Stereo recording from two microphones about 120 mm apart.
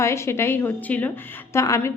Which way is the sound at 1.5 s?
25° left (ahead or behind).